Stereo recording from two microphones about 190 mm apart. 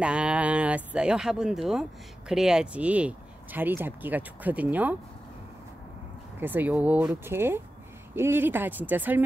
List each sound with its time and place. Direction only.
0.0 s speech: 5° right (ahead or behind)
6.4 s speech: 10° right (ahead or behind)